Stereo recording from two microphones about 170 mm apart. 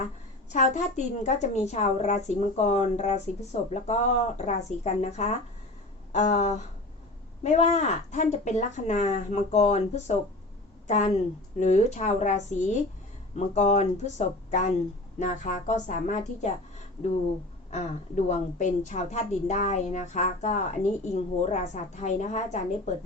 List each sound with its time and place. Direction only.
0.5 s a woman's voice: 45° left (ahead or behind)
17.7 s a woman's voice: 45° left (ahead or behind)